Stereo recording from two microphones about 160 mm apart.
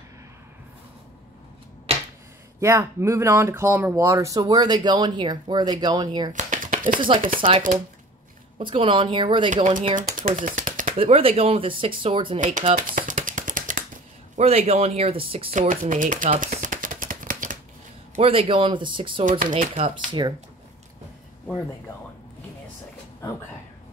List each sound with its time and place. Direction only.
2.6 s speech: 15° right (ahead or behind)
6.3 s a sound: 55° right (ahead or behind)
7.3 s speech: 35° right (ahead or behind)
9.5 s speech: 50° right (ahead or behind)
10.3 s a sound: 55° right (ahead or behind)
11.0 s speech: 35° right (ahead or behind)
12.7 s a sound: 55° right (ahead or behind)
14.3 s speech: 40° right (ahead or behind)
15.5 s shuffling cards: 50° right (ahead or behind)
18.2 s speech: 35° right (ahead or behind)
19.2 s speech: 55° right (ahead or behind)
19.8 s speech: 30° right (ahead or behind)